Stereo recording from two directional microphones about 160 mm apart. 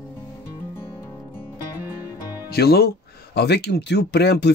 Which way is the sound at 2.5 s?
80° left.